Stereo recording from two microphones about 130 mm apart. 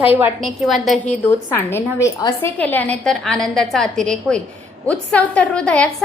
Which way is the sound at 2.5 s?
10° left (ahead or behind).